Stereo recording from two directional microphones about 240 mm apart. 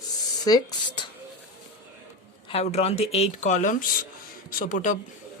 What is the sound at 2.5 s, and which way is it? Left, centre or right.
Speech, left.